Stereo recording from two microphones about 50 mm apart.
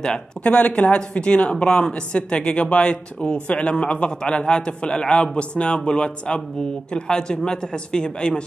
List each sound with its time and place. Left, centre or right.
0.0 s a woman's voice: centre